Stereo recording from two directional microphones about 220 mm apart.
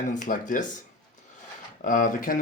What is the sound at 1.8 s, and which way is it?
Speech, 35° left (ahead or behind).